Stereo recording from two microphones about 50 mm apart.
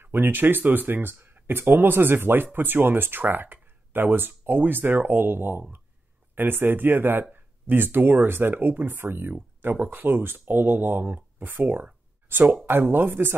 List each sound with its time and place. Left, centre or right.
0.0 s speech: right
11.7 s a sound: right
12.6 s speech: right